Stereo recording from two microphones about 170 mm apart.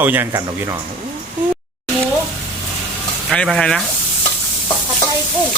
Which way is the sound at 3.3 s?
5° left (ahead or behind).